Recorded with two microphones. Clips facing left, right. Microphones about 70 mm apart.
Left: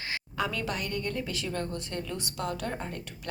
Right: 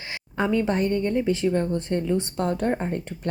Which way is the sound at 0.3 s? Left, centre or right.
Right.